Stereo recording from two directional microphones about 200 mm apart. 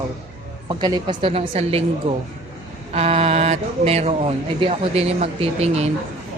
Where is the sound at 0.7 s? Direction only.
20° right (ahead or behind).